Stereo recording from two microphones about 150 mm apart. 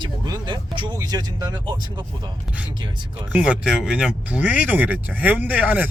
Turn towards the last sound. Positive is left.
turn(degrees=-10)  # may be behind; listen again after turning